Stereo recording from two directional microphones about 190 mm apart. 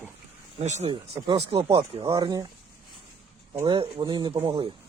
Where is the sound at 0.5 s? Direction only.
35° right (ahead or behind).